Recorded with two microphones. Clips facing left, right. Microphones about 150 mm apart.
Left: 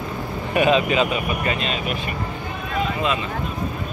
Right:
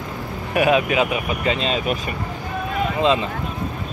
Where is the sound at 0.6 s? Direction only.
10° right (ahead or behind).